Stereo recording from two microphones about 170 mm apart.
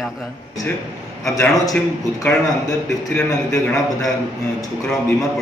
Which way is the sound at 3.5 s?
20° left (ahead or behind).